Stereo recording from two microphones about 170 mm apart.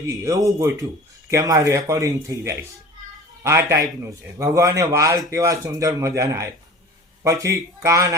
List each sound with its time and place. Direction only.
0.1 s a man's voice: 20° right (ahead or behind)